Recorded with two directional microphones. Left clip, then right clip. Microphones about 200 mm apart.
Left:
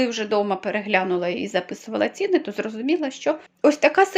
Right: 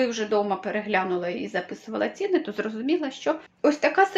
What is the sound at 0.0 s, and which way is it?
A woman's voice, 40° left (ahead or behind).